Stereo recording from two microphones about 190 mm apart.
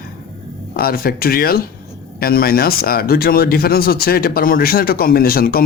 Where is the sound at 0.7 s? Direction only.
50° left (ahead or behind).